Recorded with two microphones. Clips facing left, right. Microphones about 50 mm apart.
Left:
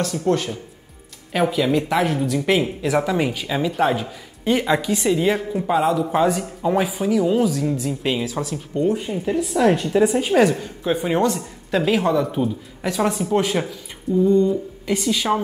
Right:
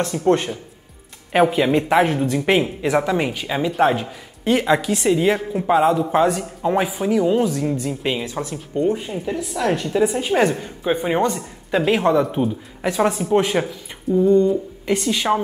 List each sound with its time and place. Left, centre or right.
0.0 s speech: right
2.9 s speech: centre
5.9 s a woman's voice: centre
8.3 s speech: right
8.5 s a woman's voice: centre
10.5 s speech: centre
13.1 s speech: centre
13.4 s speech: right
14.1 s a woman's voice: centre
15.0 s speech: centre